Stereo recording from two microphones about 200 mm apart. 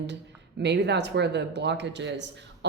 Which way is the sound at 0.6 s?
60° right (ahead or behind).